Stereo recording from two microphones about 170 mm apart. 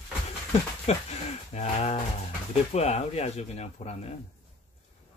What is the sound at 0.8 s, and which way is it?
Speech, 40° left (ahead or behind).